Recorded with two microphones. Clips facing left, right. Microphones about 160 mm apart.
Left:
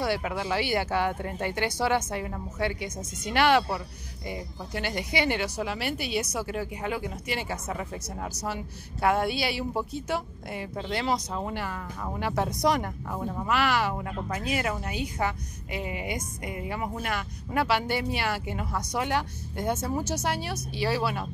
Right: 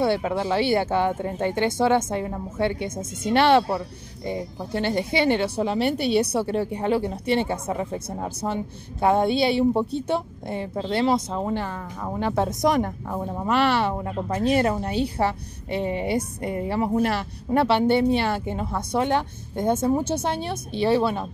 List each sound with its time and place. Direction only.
0.0 s a woman's voice: 25° right (ahead or behind)